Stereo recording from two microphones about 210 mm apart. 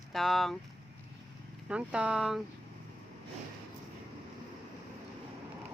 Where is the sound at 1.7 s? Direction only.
5° right (ahead or behind).